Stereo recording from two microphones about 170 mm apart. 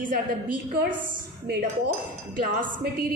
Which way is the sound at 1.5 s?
65° right (ahead or behind).